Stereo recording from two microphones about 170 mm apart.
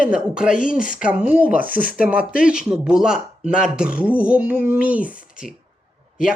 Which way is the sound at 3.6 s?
5° right (ahead or behind).